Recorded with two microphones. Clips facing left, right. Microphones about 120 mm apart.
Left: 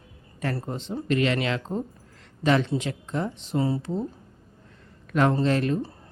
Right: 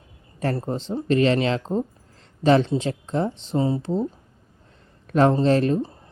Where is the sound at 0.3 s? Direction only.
30° right (ahead or behind).